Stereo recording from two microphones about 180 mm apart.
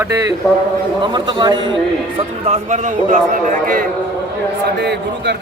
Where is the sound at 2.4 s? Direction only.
40° right (ahead or behind).